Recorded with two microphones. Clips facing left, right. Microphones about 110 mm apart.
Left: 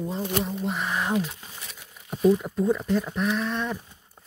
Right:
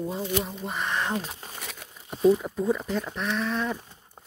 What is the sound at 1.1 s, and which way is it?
Speech, 40° right (ahead or behind).